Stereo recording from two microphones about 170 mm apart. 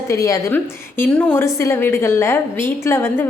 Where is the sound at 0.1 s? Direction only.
20° left (ahead or behind).